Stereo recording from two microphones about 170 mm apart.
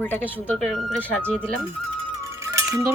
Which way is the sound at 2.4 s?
15° right (ahead or behind).